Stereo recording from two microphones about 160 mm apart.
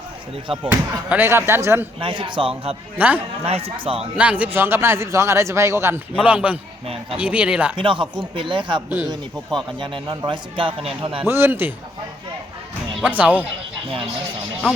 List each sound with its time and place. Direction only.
0.4 s speech: 35° right (ahead or behind)
0.7 s a man's voice: 10° right (ahead or behind)
2.0 s speech: 30° right (ahead or behind)
3.0 s a man's voice: 10° right (ahead or behind)
3.4 s speech: 35° right (ahead or behind)
4.2 s a man's voice: 10° right (ahead or behind)
6.8 s speech: 40° right (ahead or behind)
7.2 s a man's voice: 10° right (ahead or behind)
7.8 s speech: 30° right (ahead or behind)
9.8 s speech: 30° right (ahead or behind)
11.3 s a man's voice: 15° right (ahead or behind)
13.1 s a man's voice: 10° right (ahead or behind)